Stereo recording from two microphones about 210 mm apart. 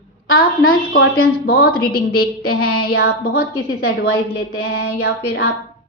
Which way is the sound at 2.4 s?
90° left.